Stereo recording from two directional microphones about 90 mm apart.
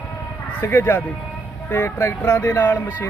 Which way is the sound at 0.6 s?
25° left (ahead or behind).